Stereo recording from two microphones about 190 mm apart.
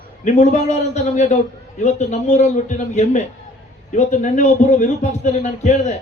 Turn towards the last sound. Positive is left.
turn(degrees=40)  # may be behind; listen again after turning